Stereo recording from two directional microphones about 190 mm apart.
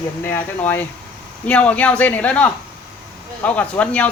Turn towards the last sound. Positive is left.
turn(degrees=10)  # may be behind; listen again after turning